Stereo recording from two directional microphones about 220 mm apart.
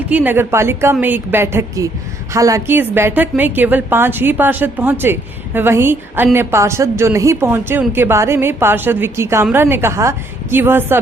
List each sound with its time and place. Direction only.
0.1 s a woman's voice: 5° right (ahead or behind)